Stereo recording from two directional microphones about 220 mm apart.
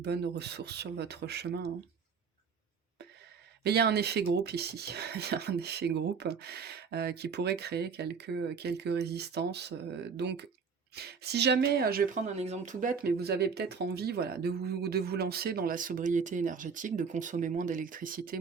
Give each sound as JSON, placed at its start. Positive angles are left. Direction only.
{"t": 0.0, "sound": "speech", "side_deg": -50}
{"t": 3.6, "sound": "speech", "side_deg": -50}
{"t": 12.4, "sound": "speech", "side_deg": -30}